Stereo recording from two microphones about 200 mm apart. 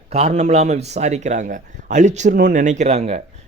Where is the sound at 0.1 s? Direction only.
35° right (ahead or behind).